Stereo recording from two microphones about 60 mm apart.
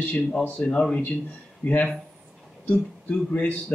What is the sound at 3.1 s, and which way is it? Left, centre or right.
Speech, left.